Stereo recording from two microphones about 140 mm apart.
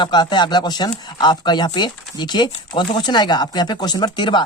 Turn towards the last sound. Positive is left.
turn(degrees=35)  # may be behind; listen again after turning